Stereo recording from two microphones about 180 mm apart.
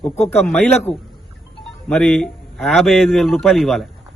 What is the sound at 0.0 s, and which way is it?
A man's voice, 10° left (ahead or behind).